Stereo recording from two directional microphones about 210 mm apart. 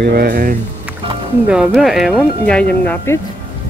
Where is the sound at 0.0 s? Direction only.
50° right (ahead or behind).